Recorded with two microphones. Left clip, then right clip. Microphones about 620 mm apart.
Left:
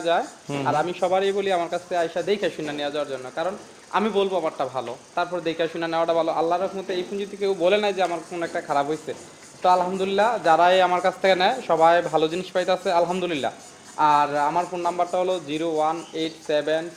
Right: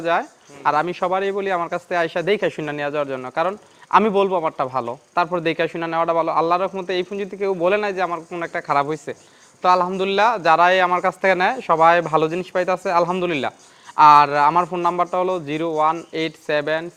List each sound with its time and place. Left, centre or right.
0.0 s a man's voice: right
13.9 s a man's voice: right